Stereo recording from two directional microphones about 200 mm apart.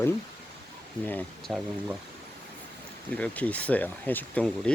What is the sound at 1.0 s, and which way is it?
Speech, 10° left (ahead or behind).